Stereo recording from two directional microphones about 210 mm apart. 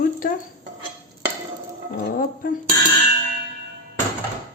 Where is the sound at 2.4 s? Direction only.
40° left (ahead or behind).